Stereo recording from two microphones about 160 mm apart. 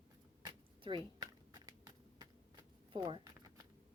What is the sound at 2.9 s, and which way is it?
Speech, 30° right (ahead or behind).